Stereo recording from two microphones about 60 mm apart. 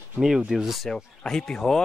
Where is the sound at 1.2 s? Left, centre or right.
Centre.